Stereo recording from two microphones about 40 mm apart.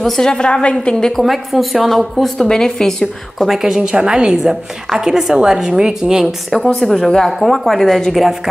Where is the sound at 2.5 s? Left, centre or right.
Centre.